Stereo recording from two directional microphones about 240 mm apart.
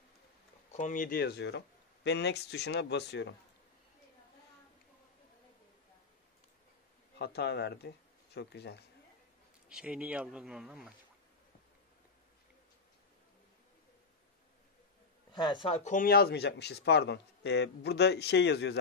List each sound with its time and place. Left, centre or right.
0.7 s speech: left
7.2 s speech: left
9.7 s speech: centre
15.3 s speech: centre; by 18.8 s left